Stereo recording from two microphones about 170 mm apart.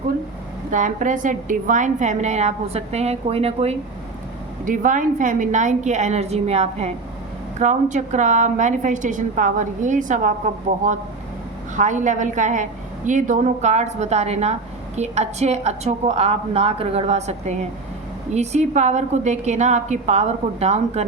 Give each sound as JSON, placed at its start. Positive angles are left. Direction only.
{"t": 0.7, "sound": "a woman's voice", "side_deg": -50}
{"t": 4.6, "sound": "a woman's voice", "side_deg": -50}